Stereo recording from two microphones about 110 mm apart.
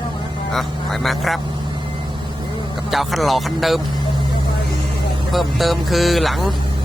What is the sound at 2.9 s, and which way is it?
Speech, centre (ahead or behind).